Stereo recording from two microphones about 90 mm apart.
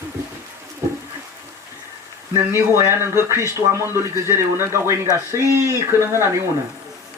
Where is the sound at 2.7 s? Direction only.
35° right (ahead or behind).